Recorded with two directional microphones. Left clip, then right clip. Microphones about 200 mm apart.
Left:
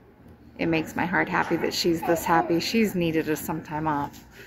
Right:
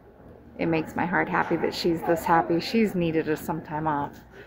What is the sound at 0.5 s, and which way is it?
A woman's voice, centre (ahead or behind).